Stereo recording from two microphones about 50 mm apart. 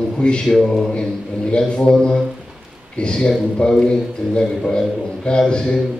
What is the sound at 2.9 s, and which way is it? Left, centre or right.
A man's voice, centre.